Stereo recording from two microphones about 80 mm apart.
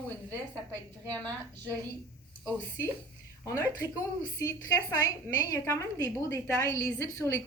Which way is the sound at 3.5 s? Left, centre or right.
Left.